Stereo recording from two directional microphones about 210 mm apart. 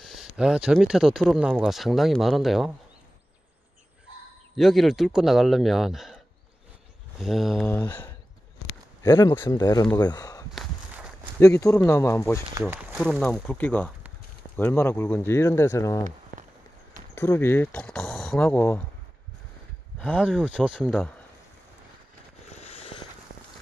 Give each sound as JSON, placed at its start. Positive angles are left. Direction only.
{"t": 0.0, "sound": "speech", "side_deg": 0}
{"t": 4.6, "sound": "speech", "side_deg": 0}
{"t": 7.2, "sound": "speech", "side_deg": 0}
{"t": 12.5, "sound": "speech", "side_deg": -10}
{"t": 13.0, "sound": "speech", "side_deg": 0}
{"t": 17.1, "sound": "speech", "side_deg": 10}
{"t": 20.0, "sound": "speech", "side_deg": 5}
{"t": 22.5, "sound": "a sound", "side_deg": 30}